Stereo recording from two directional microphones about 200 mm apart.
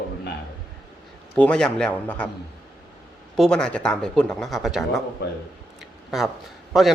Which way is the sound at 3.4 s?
5° left (ahead or behind).